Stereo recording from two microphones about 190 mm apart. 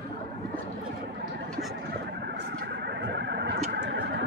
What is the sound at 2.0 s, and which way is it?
Vehicle, 65° right (ahead or behind).